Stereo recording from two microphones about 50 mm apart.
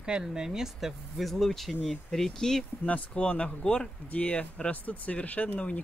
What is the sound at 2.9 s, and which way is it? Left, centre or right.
Speech, left.